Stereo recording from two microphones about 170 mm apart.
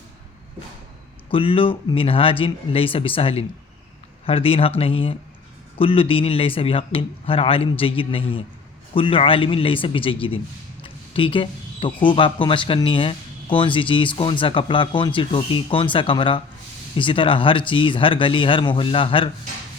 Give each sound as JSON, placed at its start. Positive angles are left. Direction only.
{"t": 1.3, "sound": "speech", "side_deg": 30}